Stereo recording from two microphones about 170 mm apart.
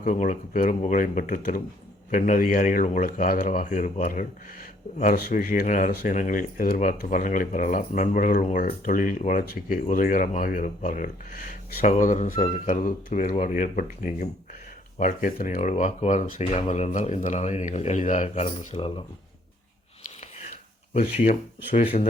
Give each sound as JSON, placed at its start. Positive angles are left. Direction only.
{"t": 0.0, "sound": "speech", "side_deg": 45}
{"t": 15.7, "sound": "speech", "side_deg": 40}